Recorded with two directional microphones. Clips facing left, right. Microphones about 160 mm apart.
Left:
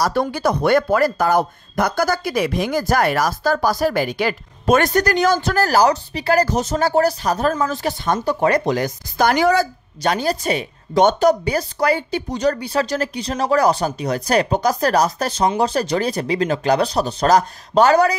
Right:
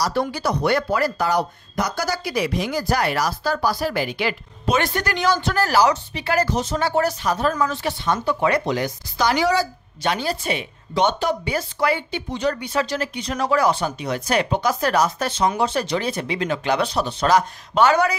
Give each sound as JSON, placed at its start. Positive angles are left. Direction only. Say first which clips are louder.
{"t": 0.0, "sound": "a woman's voice", "louder": "left 4 dB", "side_deg": 50}